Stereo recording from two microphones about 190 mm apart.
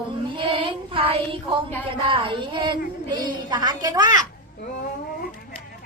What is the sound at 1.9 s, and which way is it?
A woman's voice, 25° right (ahead or behind).